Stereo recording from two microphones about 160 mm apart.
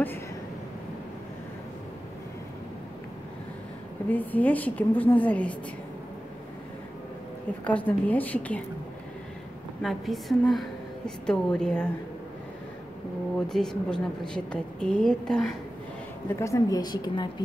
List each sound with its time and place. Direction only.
4.1 s a woman's voice: 10° left (ahead or behind)
7.6 s a woman's voice: 10° left (ahead or behind)
9.8 s a woman's voice: centre (ahead or behind)
13.5 s a woman's voice: 5° left (ahead or behind)
16.3 s a woman's voice: 15° left (ahead or behind)